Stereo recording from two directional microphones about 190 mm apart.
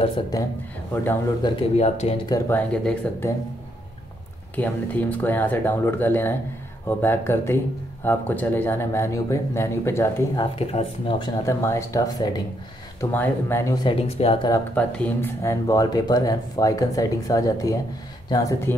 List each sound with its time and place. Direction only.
0.0 s speech: 20° left (ahead or behind)
1.4 s speech: 30° left (ahead or behind)
2.2 s speech: 15° left (ahead or behind)
4.6 s speech: 10° left (ahead or behind)
10.4 s speech: 30° left (ahead or behind)
11.4 s speech: 15° left (ahead or behind); by 14.5 s 30° left (ahead or behind)
14.5 s speech: 10° left (ahead or behind)